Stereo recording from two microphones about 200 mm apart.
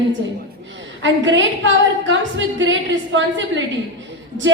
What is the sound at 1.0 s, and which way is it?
A woman's voice, 65° right (ahead or behind).